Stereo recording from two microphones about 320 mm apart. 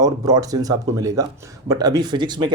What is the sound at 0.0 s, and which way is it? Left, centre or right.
Speech, centre.